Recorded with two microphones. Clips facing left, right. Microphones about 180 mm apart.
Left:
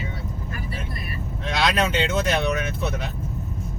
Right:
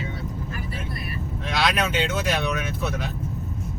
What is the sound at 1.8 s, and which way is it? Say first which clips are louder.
Speech: left 2 dB; 25° left (ahead or behind).